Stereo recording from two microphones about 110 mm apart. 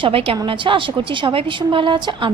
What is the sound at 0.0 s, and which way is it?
A woman's voice, 55° right (ahead or behind).